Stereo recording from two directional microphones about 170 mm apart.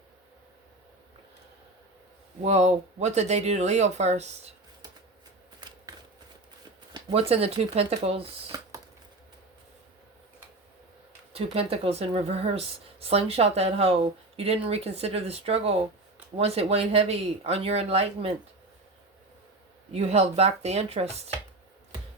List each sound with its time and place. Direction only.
2.4 s speech: 40° right (ahead or behind)
6.9 s speech: 35° right (ahead or behind)
8.5 s a sound: 20° right (ahead or behind)
11.3 s speech: 35° right (ahead or behind)
19.9 s speech: 35° right (ahead or behind)